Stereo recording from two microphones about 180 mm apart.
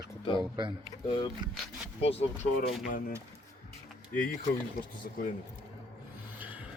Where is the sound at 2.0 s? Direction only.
35° left (ahead or behind).